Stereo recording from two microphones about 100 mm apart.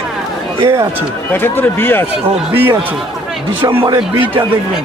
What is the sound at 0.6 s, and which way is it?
Speech, 30° right (ahead or behind).